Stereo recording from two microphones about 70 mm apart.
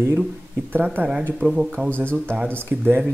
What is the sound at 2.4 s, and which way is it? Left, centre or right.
Speech, right.